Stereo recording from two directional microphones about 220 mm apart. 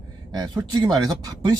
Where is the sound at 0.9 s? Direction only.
15° right (ahead or behind).